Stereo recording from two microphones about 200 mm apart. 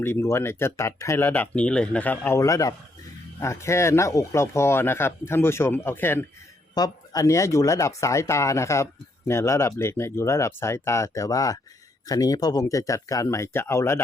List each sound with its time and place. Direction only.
0.0 s speech: 10° left (ahead or behind)